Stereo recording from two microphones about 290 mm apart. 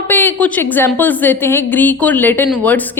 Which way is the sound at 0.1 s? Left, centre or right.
Centre.